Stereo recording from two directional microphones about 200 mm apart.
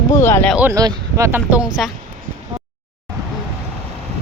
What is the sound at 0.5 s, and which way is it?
Speech, 15° right (ahead or behind).